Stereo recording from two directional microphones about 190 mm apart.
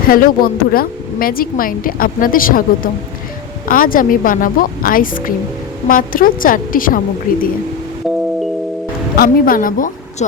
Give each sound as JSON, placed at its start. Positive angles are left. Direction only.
{"t": 0.1, "sound": "speech", "side_deg": 50}
{"t": 9.1, "sound": "speech", "side_deg": 50}